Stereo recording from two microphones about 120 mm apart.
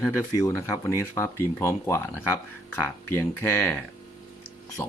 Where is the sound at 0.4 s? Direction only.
25° left (ahead or behind).